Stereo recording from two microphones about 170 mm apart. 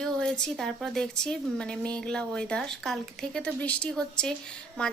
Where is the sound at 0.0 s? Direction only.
5° left (ahead or behind).